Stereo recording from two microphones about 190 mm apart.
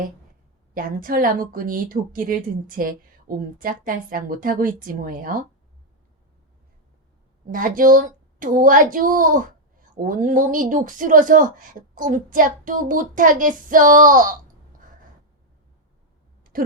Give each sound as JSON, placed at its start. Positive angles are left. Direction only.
{"t": 0.7, "sound": "speech", "side_deg": -45}
{"t": 7.5, "sound": "speech", "side_deg": -45}
{"t": 16.4, "sound": "a sound", "side_deg": -45}